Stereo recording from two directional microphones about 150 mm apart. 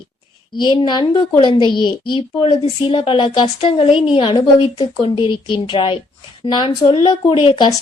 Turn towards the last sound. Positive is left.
turn(degrees=35)  # may be behind; listen again after turning